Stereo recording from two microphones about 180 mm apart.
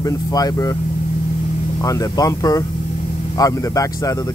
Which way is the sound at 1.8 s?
20° left (ahead or behind).